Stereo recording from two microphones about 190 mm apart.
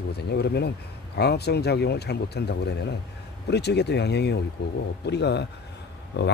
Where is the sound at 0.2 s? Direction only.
60° left (ahead or behind).